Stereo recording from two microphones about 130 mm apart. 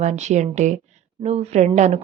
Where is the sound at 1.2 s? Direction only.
55° right (ahead or behind).